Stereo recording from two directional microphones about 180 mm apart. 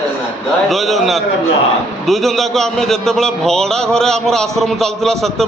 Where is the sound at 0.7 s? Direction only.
Centre (ahead or behind).